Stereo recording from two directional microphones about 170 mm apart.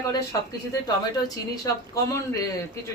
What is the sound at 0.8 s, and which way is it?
A man's voice, 20° left (ahead or behind).